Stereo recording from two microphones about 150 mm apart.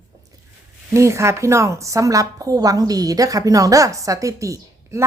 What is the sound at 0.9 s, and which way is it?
A woman's voice, 20° right (ahead or behind).